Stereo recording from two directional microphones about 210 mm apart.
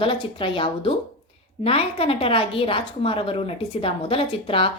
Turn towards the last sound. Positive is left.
turn(degrees=25)  # may be behind; listen again after turning